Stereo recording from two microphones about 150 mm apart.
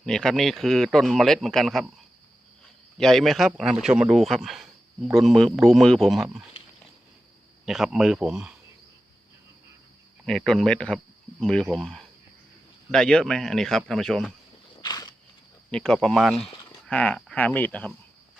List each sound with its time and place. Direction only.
0.0 s speech: 5° left (ahead or behind)
3.0 s speech: 5° left (ahead or behind)
7.6 s speech: centre (ahead or behind)
10.2 s speech: 5° left (ahead or behind)
14.8 s a sound: 25° left (ahead or behind)
15.7 s speech: 5° left (ahead or behind)